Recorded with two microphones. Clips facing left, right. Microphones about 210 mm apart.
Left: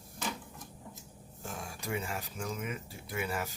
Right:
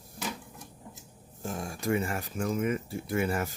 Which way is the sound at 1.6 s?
50° right (ahead or behind).